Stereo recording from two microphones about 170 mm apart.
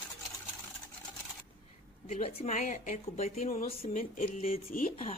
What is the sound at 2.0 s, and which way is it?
A woman's voice, 40° left (ahead or behind).